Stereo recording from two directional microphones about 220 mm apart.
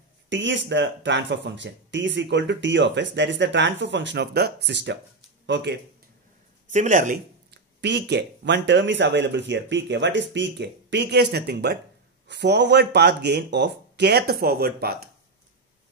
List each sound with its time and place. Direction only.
0.3 s speech: 55° right (ahead or behind)
6.7 s speech: 35° right (ahead or behind)
7.8 s speech: 50° right (ahead or behind)